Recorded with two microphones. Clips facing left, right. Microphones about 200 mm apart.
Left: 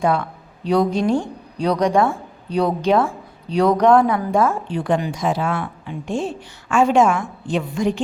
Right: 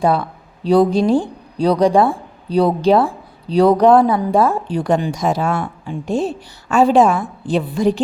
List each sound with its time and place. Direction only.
0.0 s a woman's voice: 35° right (ahead or behind)